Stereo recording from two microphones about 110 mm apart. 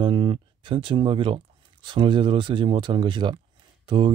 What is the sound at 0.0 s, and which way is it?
Speech, 45° right (ahead or behind).